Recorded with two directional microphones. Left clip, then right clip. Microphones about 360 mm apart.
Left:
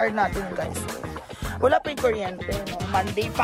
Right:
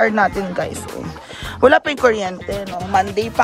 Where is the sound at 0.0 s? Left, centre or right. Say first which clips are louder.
Right 8 dB; right.